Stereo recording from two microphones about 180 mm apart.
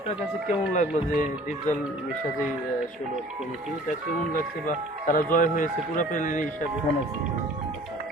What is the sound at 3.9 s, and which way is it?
Speech, 45° left (ahead or behind).